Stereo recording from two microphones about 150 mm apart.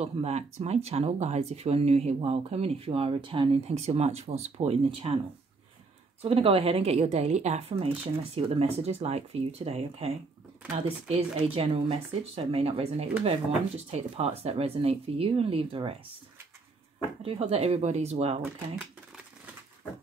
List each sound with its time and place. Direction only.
0.0 s speech: 45° right (ahead or behind)
6.2 s speech: 40° right (ahead or behind)
17.2 s speech: 40° right (ahead or behind)